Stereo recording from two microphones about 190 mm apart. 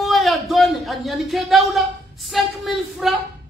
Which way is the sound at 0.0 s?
Centre (ahead or behind).